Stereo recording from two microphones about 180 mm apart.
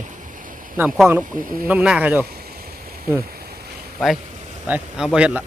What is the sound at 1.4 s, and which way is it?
Speech, 50° right (ahead or behind).